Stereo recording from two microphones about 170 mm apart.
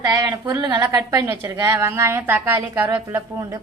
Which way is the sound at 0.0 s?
20° right (ahead or behind).